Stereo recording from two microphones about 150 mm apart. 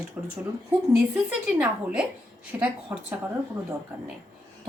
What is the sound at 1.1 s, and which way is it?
Speech, 5° right (ahead or behind).